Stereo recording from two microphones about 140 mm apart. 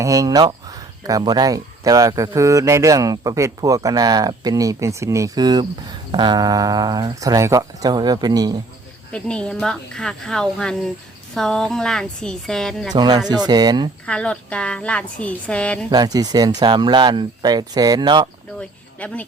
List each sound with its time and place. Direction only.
0.0 s speech: 25° right (ahead or behind)
9.1 s speech: 5° left (ahead or behind)
12.9 s speech: 30° right (ahead or behind)
14.0 s a woman's voice: 5° left (ahead or behind)
15.9 s speech: 30° right (ahead or behind)
18.9 s speech: 10° left (ahead or behind)